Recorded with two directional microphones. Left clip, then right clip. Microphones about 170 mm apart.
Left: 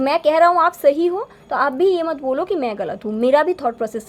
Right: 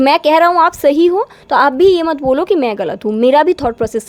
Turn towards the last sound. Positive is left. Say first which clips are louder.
# right 6 dB
turn(degrees=-35)  # may be behind; listen again after turning